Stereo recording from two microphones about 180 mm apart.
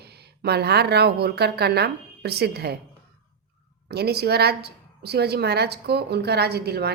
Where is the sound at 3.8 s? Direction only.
60° right (ahead or behind).